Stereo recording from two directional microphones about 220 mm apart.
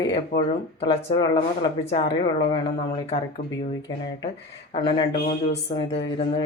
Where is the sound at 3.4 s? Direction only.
40° left (ahead or behind).